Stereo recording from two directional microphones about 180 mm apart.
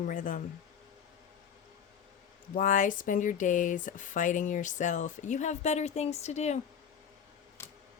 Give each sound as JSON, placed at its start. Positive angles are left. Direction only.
{"t": 0.0, "sound": "speech", "side_deg": 50}
{"t": 2.6, "sound": "speech", "side_deg": 45}
{"t": 7.6, "sound": "a sound", "side_deg": 15}